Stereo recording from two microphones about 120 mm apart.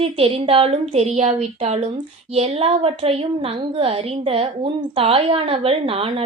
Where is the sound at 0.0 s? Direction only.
50° right (ahead or behind).